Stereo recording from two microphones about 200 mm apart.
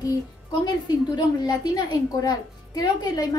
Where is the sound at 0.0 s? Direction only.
20° left (ahead or behind).